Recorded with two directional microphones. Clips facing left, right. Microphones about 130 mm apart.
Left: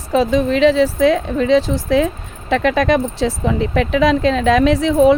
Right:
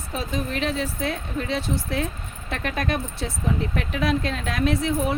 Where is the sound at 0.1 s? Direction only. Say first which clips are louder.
Left 14 dB; 90° left.